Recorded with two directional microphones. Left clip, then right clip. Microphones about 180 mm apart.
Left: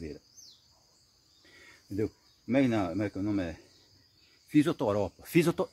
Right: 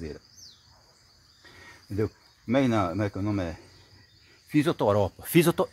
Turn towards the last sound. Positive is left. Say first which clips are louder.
# right 4 dB
turn(degrees=-25)  # may be behind; listen again after turning